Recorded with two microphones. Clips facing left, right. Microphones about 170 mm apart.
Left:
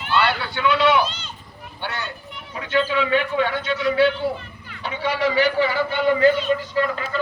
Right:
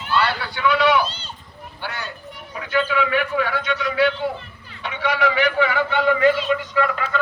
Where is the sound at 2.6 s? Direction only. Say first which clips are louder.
Even; 30° left (ahead or behind).